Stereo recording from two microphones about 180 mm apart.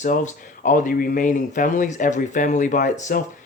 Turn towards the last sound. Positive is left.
turn(degrees=45)  # may be behind; listen again after turning